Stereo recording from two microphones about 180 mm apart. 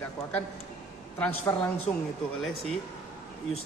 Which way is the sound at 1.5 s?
15° left (ahead or behind).